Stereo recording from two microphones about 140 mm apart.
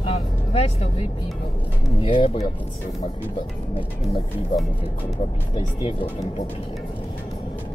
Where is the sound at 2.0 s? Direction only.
40° left (ahead or behind).